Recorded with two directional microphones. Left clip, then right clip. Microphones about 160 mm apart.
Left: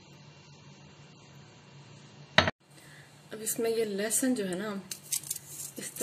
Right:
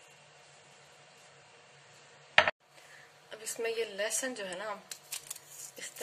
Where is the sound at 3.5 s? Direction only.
15° left (ahead or behind).